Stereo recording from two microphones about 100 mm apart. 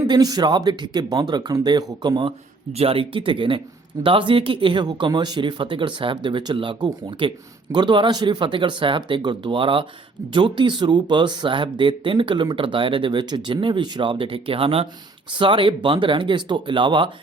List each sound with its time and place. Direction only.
0.1 s speech: 40° right (ahead or behind)
2.7 s speech: 70° right (ahead or behind)
15.3 s speech: 55° right (ahead or behind)